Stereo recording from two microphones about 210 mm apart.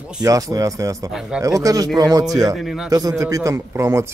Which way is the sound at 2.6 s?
Centre (ahead or behind).